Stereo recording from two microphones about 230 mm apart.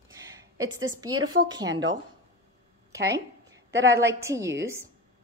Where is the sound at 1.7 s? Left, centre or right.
Right.